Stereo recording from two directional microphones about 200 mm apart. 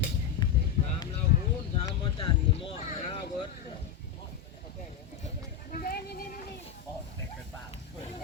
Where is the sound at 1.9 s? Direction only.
25° left (ahead or behind).